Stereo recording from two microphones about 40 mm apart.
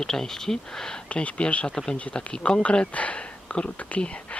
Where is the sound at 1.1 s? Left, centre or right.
Left.